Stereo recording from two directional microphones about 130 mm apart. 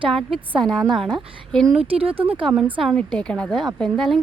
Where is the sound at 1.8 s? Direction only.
45° right (ahead or behind).